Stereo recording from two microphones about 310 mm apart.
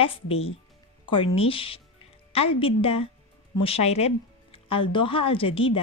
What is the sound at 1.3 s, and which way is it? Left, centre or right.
A woman's voice, centre.